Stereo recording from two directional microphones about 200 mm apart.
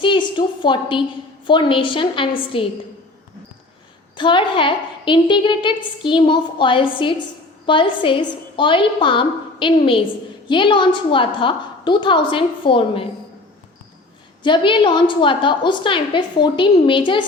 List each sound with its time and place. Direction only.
0.0 s a woman's voice: 25° left (ahead or behind)
4.2 s a woman's voice: 25° left (ahead or behind)
14.4 s a woman's voice: 25° left (ahead or behind)